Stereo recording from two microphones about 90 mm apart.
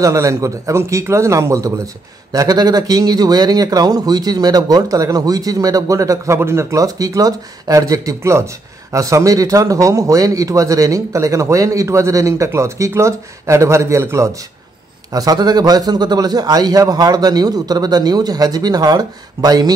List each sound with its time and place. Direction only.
0.0 s a man's voice: 35° right (ahead or behind)
15.1 s speech: 45° right (ahead or behind)